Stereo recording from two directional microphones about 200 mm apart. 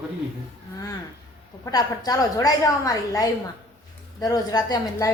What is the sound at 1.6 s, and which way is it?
A woman's voice, 20° left (ahead or behind).